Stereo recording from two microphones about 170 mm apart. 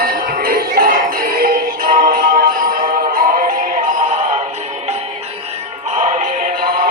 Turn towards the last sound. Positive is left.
turn(degrees=-60)  # may be behind; listen again after turning